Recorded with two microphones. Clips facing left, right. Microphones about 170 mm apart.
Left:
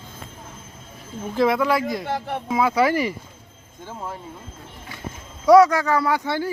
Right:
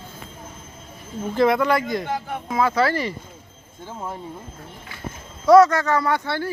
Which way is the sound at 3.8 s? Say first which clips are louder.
Right 1 dB; 5° right (ahead or behind).